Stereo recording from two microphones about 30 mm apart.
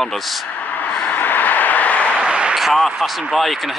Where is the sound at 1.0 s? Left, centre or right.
Left.